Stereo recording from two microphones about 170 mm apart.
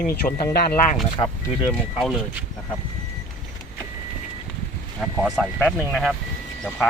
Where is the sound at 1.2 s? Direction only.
20° left (ahead or behind).